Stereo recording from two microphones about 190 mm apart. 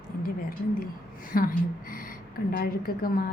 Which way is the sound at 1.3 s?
50° left (ahead or behind).